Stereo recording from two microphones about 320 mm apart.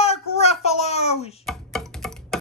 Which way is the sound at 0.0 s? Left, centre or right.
Centre.